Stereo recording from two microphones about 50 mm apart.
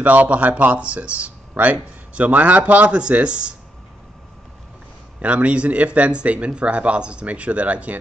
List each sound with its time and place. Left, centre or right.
0.0 s speech: right
5.2 s speech: right